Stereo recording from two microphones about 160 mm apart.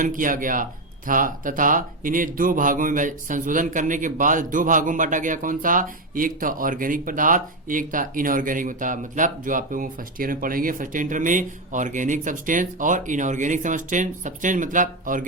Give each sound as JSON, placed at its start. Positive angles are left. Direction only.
{"t": 0.0, "sound": "speech", "side_deg": -55}